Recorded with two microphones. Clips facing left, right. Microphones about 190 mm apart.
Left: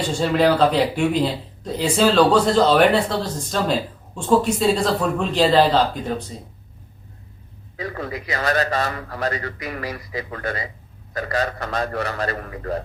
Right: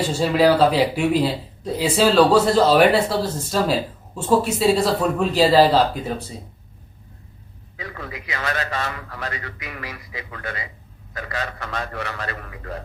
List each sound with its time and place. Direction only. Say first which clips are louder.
0.1 s speech: even; 5° right (ahead or behind)
7.8 s a man's voice: left 6 dB; 40° left (ahead or behind)